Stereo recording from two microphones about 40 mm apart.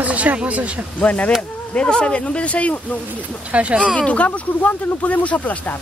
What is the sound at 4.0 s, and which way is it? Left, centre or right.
Speech, left.